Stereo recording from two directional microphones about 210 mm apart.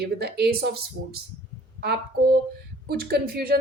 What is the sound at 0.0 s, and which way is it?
Speech, 50° right (ahead or behind).